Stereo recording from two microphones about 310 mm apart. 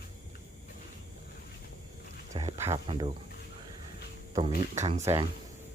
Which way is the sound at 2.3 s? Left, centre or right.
Centre.